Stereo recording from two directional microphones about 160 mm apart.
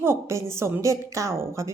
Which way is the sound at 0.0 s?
15° right (ahead or behind).